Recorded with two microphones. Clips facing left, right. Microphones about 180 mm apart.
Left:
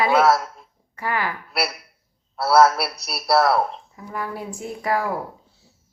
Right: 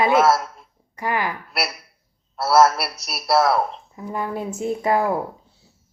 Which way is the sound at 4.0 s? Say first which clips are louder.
Right 4 dB; 25° right (ahead or behind).